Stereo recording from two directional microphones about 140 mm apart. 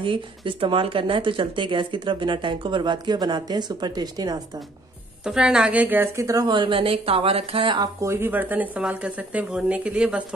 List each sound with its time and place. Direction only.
0.0 s speech: 40° right (ahead or behind)
5.2 s a woman's voice: 5° right (ahead or behind); by 7.9 s 35° right (ahead or behind)
8.0 s speech: 20° right (ahead or behind)